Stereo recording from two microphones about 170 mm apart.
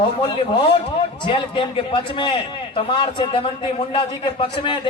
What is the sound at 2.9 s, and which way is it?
Speech, 30° left (ahead or behind).